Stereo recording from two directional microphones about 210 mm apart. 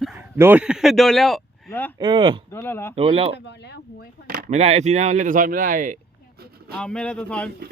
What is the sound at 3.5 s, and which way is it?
Speech, 55° left (ahead or behind).